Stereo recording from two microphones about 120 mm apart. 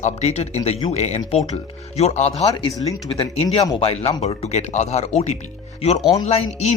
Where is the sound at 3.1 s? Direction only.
50° left (ahead or behind).